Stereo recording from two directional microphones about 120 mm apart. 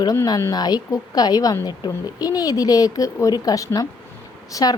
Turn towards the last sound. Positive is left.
turn(degrees=30)  # may be behind; listen again after turning